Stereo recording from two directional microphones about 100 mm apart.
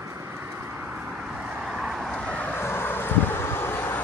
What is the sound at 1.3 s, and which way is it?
Vehicle, 5° right (ahead or behind).